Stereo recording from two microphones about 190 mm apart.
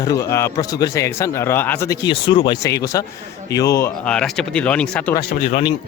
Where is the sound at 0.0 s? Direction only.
15° left (ahead or behind).